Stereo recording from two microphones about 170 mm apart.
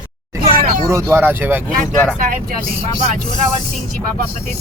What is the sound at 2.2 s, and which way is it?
Speech, 55° right (ahead or behind).